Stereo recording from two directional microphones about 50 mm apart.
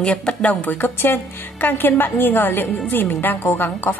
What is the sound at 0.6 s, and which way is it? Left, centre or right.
A woman's voice, left.